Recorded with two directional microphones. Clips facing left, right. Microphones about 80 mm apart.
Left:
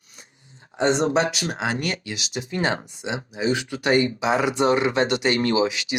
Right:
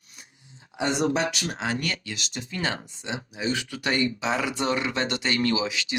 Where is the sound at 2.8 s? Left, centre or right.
Centre.